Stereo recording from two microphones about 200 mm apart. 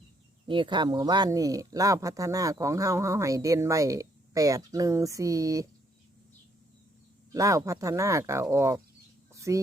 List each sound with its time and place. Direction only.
0.4 s speech: 25° right (ahead or behind)
7.3 s speech: 15° right (ahead or behind)
9.3 s a sound: 15° right (ahead or behind)